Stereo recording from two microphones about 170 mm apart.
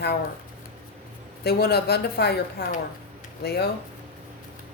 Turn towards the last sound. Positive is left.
turn(degrees=70)  # may be behind; listen again after turning